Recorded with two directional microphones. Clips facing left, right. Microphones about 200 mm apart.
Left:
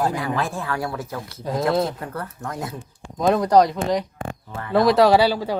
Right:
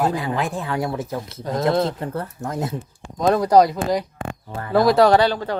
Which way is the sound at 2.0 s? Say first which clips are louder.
Right 4 dB; 25° right (ahead or behind).